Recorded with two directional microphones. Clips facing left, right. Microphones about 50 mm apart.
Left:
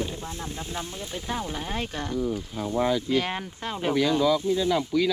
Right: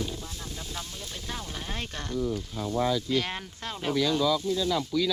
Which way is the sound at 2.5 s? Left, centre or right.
Left.